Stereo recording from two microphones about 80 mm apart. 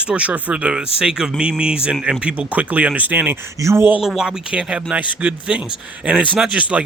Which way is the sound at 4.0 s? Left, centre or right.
Centre.